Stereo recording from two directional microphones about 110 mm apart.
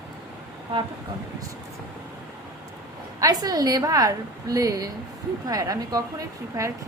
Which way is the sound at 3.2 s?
35° right (ahead or behind).